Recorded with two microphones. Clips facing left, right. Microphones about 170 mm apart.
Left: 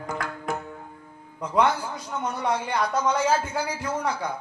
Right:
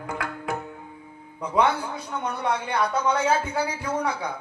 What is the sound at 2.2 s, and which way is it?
A man's voice, 60° right (ahead or behind).